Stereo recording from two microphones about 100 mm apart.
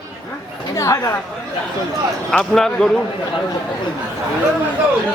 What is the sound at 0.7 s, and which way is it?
Speech, 35° left (ahead or behind).